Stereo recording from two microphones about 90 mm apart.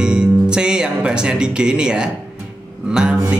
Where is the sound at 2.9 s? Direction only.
10° right (ahead or behind).